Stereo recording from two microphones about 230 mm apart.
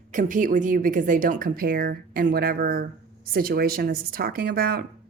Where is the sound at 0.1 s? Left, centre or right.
Right.